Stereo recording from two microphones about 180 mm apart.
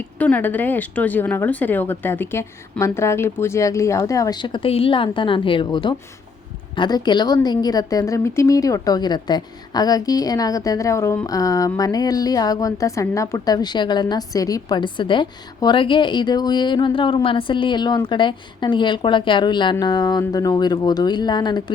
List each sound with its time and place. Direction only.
0.2 s a woman's voice: 10° left (ahead or behind)